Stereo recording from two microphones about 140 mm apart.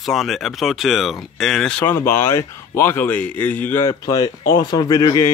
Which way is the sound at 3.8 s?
25° left (ahead or behind).